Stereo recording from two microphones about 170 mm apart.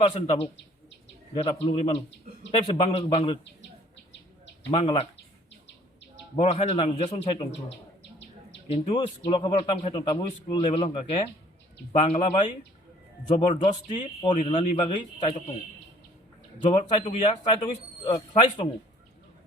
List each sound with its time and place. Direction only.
0.0 s a man's voice: 35° left (ahead or behind)
4.7 s a man's voice: 35° left (ahead or behind)
6.3 s a man's voice: 35° left (ahead or behind)
8.6 s a man's voice: 30° left (ahead or behind)
16.6 s a man's voice: 35° left (ahead or behind)
18.0 s speech: 25° left (ahead or behind)